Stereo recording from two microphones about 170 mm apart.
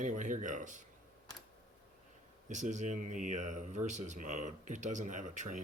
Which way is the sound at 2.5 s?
45° right (ahead or behind).